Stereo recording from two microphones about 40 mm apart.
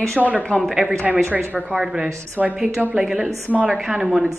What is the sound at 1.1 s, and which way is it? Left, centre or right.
A woman's voice, centre.